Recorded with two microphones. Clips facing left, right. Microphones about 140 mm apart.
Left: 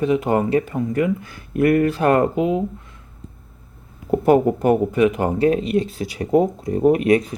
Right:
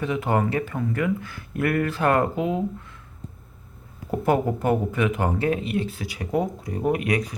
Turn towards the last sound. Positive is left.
turn(degrees=25)  # may be behind; listen again after turning